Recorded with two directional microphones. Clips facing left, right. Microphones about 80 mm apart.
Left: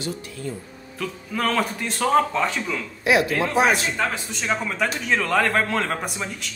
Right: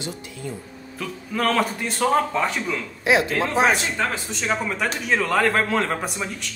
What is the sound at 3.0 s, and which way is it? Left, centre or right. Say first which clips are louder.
Speech: even; right.